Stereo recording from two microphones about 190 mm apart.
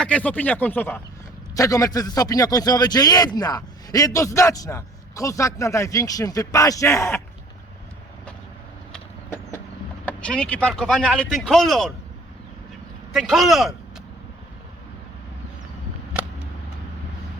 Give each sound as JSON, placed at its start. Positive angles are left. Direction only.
{"t": 0.0, "sound": "a man's voice", "side_deg": 5}
{"t": 10.1, "sound": "speech", "side_deg": 5}
{"t": 13.1, "sound": "speech", "side_deg": 0}